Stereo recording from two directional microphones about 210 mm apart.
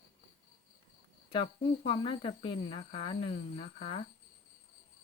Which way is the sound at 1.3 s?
25° left (ahead or behind).